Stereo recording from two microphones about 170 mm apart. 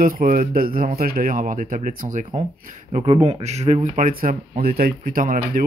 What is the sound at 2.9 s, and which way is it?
Speech, 35° right (ahead or behind).